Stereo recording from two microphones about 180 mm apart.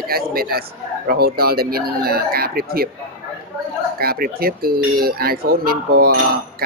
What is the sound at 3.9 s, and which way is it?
Speech, 55° right (ahead or behind).